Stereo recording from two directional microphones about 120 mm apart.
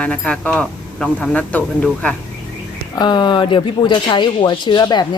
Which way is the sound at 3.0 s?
40° left (ahead or behind).